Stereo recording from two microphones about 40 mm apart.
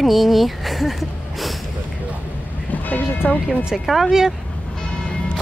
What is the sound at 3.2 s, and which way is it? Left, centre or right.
Speech, left.